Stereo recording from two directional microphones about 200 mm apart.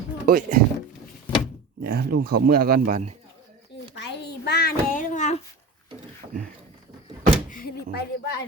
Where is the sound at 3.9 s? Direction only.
55° left (ahead or behind).